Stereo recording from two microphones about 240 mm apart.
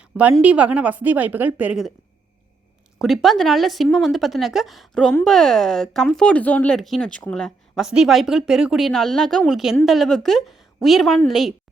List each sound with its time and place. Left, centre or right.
0.2 s speech: centre
3.0 s a woman's voice: centre